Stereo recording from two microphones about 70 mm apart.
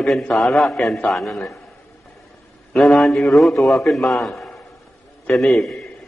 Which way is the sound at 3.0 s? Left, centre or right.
Centre.